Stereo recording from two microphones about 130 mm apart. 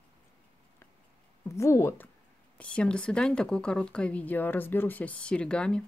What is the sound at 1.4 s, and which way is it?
Speech, 20° left (ahead or behind).